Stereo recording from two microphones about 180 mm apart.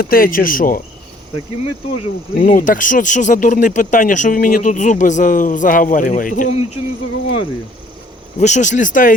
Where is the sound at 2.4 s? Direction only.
50° left (ahead or behind).